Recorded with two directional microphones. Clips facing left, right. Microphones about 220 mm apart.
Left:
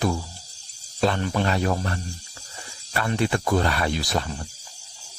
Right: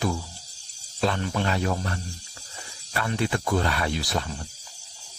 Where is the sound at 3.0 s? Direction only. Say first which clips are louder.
Left 3 dB; 50° left (ahead or behind).